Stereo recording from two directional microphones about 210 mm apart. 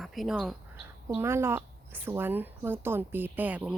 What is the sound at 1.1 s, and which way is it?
Speech, 10° right (ahead or behind).